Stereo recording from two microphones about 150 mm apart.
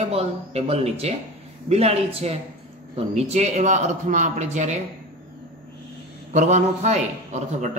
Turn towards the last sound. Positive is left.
turn(degrees=-50)  # may be behind; listen again after turning